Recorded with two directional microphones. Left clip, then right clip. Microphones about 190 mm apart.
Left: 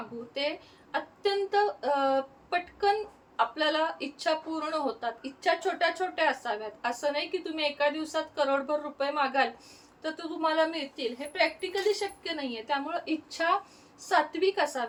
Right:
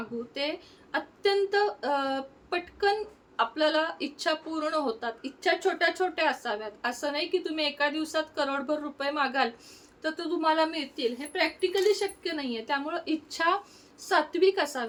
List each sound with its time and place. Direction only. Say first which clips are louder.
0.3 s speech: left 2 dB; 25° right (ahead or behind)